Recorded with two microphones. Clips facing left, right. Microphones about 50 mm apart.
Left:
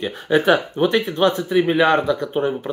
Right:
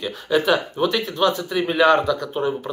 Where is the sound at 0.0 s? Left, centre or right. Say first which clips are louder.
Left 3 dB; left.